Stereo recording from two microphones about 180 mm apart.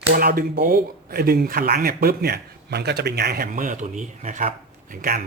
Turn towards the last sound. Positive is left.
turn(degrees=-55)  # may be behind; listen again after turning